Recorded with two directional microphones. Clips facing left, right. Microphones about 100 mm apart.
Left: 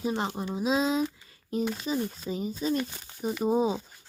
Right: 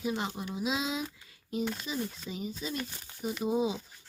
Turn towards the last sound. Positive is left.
turn(degrees=40)  # may be behind; listen again after turning